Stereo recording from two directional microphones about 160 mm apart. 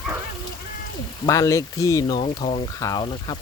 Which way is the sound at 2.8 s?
25° left (ahead or behind).